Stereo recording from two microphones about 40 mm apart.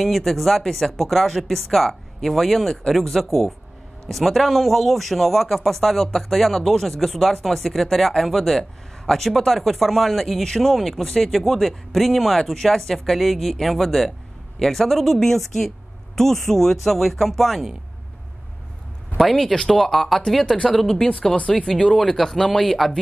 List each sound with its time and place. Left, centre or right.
0.0 s speech: centre
19.1 s speech: centre